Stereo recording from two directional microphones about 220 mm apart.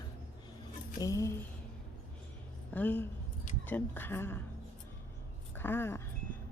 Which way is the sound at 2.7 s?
10° left (ahead or behind).